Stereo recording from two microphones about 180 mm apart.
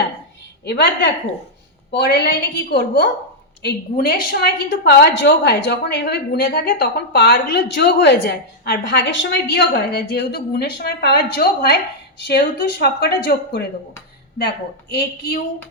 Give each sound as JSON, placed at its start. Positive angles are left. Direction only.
{"t": 0.6, "sound": "a woman's voice", "side_deg": 70}
{"t": 12.8, "sound": "a woman's voice", "side_deg": 65}